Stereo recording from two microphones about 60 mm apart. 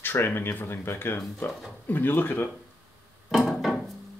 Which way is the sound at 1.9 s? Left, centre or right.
Left.